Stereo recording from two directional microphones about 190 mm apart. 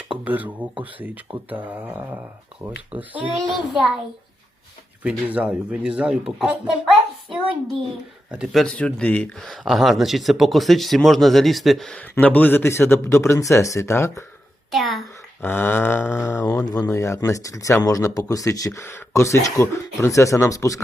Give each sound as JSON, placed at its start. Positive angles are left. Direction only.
{"t": 0.1, "sound": "speech", "side_deg": -10}
{"t": 5.0, "sound": "speech", "side_deg": -5}
{"t": 14.7, "sound": "speech", "side_deg": 0}